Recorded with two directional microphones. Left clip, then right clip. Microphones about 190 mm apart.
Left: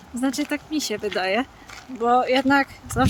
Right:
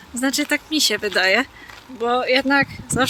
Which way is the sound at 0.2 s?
5° left (ahead or behind).